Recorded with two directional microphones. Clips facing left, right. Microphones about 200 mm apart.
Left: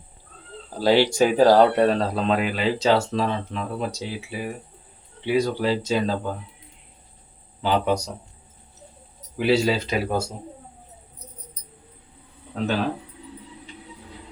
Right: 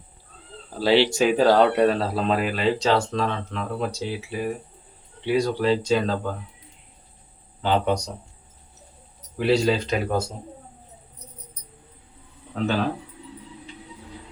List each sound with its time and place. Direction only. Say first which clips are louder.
0.8 s speech: left 1 dB; 45° left (ahead or behind)
1.7 s speech: even; centre (ahead or behind)
7.6 s speech: even; 10° left (ahead or behind)
9.4 s speech: even; 5° left (ahead or behind)